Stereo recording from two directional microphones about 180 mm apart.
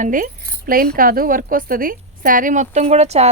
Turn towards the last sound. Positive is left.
turn(degrees=-35)  # may be behind; listen again after turning